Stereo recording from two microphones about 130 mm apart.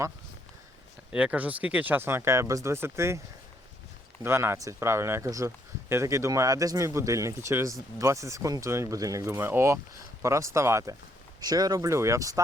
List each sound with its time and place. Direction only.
1.1 s speech: 10° right (ahead or behind)
4.2 s speech: 20° right (ahead or behind)